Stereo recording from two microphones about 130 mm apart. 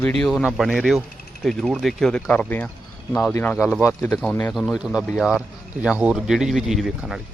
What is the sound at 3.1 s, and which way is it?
Speech, centre (ahead or behind).